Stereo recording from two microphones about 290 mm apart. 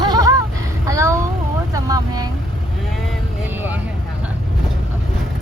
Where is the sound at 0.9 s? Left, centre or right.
Centre.